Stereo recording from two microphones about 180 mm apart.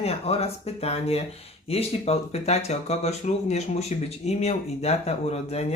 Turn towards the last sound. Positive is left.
turn(degrees=35)  # may be behind; listen again after turning